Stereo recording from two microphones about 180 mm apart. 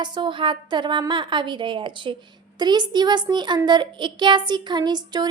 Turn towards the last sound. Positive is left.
turn(degrees=-25)  # may be behind; listen again after turning